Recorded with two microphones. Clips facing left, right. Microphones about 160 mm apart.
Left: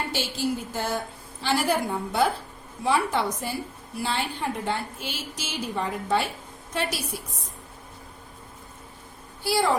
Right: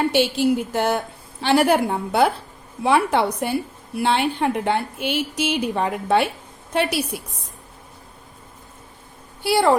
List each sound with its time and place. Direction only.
0.1 s a woman's voice: 65° right (ahead or behind)
9.4 s a woman's voice: 65° right (ahead or behind)